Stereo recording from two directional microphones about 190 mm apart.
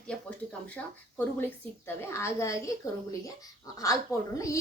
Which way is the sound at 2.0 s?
15° left (ahead or behind).